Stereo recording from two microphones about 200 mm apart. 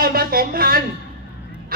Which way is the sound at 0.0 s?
50° right (ahead or behind).